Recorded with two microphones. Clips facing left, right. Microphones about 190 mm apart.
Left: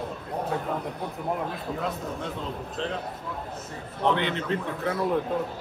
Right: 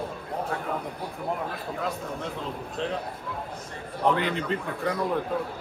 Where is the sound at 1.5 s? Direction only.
Centre (ahead or behind).